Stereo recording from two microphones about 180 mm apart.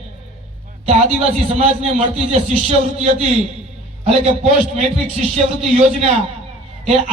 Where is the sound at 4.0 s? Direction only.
35° right (ahead or behind).